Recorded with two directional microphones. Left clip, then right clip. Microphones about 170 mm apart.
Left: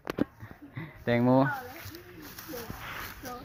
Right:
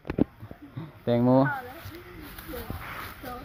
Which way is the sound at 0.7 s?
25° left (ahead or behind).